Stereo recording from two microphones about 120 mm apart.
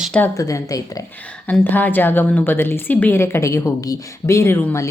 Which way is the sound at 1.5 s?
15° left (ahead or behind).